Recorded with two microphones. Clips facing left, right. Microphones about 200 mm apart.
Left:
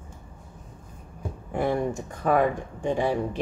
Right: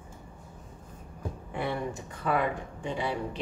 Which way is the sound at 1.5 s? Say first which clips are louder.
Left 7 dB; 45° left (ahead or behind).